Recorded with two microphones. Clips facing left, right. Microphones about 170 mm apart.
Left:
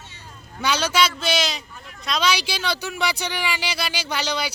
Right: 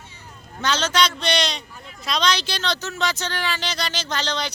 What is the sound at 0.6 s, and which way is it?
A man's voice, 10° left (ahead or behind).